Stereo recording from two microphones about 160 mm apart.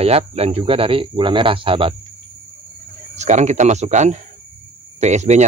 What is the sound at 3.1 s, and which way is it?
Speech, 45° right (ahead or behind).